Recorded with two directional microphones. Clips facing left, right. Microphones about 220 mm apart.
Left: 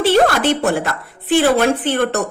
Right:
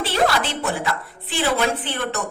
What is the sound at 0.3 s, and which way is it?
A woman's voice, 55° left (ahead or behind).